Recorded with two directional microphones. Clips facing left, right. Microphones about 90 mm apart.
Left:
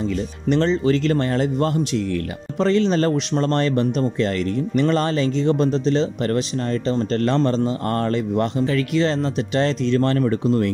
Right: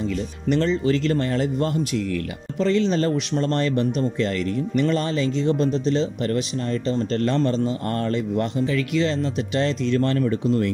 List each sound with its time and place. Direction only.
0.5 s speech: 35° left (ahead or behind)
6.2 s speech: 50° left (ahead or behind)